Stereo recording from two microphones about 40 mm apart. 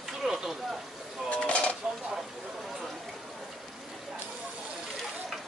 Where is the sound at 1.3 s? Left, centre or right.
Left.